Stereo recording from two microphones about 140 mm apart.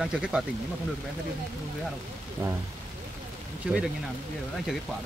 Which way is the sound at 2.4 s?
20° right (ahead or behind).